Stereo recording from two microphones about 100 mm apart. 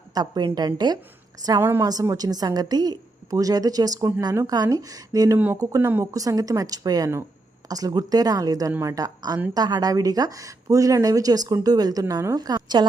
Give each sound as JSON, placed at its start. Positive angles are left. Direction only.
{"t": 0.1, "sound": "a woman's voice", "side_deg": -45}
{"t": 5.8, "sound": "speech", "side_deg": -20}
{"t": 6.1, "sound": "a woman's voice", "side_deg": -35}